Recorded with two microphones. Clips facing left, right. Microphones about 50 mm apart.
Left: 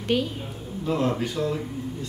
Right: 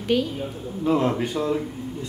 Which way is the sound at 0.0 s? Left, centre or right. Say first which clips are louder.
Right 2 dB; centre.